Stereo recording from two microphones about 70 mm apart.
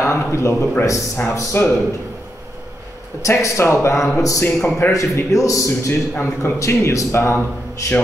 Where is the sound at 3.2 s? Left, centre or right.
Left.